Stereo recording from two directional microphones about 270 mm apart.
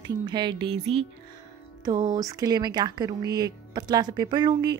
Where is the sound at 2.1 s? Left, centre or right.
Centre.